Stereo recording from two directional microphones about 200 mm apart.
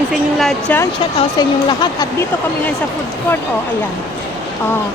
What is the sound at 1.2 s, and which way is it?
A woman's voice, 20° left (ahead or behind).